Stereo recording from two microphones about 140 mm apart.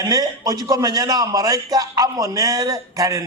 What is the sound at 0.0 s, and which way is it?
A man's voice, 25° right (ahead or behind).